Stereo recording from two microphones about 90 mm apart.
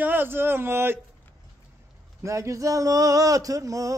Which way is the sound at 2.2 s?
35° right (ahead or behind).